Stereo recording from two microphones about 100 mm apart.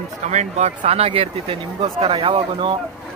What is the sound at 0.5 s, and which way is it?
Speech, 90° right.